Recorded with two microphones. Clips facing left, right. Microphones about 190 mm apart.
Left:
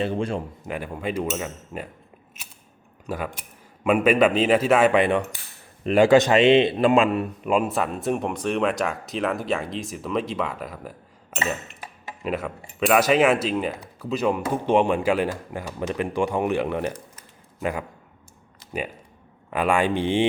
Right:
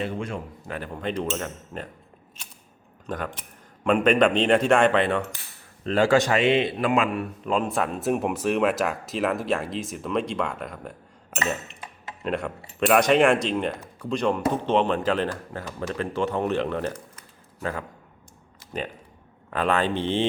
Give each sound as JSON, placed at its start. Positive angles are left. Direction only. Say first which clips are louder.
{"t": 0.0, "sound": "a man's voice", "louder": "left 5 dB", "side_deg": 30}
{"t": 0.6, "sound": "speech", "louder": "left 2 dB", "side_deg": 10}
{"t": 3.1, "sound": "speech", "louder": "left 1 dB", "side_deg": 10}
{"t": 7.4, "sound": "speech", "louder": "left 2 dB", "side_deg": 10}
{"t": 19.5, "sound": "speech", "louder": "left 2 dB", "side_deg": 10}